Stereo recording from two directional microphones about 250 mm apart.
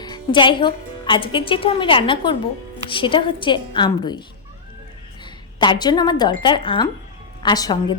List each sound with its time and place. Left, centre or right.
0.0 s a woman's voice: centre
5.2 s a woman's voice: centre